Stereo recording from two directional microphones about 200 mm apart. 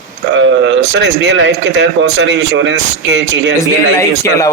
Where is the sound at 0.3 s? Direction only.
70° right (ahead or behind).